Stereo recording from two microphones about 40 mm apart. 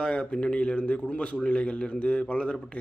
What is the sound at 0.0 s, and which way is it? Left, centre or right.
Speech, left.